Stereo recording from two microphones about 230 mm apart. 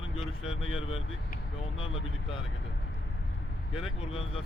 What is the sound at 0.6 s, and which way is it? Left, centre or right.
Speech, left.